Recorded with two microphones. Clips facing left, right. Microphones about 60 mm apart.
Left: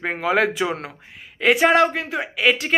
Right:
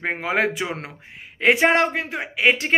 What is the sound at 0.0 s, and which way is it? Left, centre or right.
A woman's voice, right.